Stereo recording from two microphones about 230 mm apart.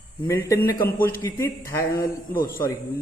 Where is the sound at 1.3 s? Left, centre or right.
Centre.